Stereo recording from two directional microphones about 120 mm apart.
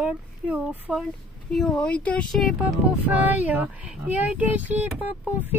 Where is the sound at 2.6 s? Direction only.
15° right (ahead or behind).